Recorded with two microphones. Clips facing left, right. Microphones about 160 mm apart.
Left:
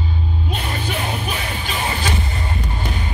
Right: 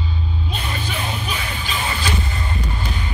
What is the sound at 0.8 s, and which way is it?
Music, 55° left (ahead or behind).